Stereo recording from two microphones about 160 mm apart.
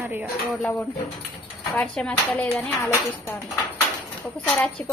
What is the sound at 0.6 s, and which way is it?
A woman's voice, 10° left (ahead or behind).